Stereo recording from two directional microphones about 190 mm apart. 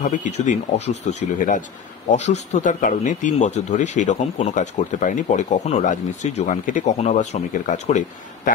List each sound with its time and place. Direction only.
0.0 s speech: 40° left (ahead or behind)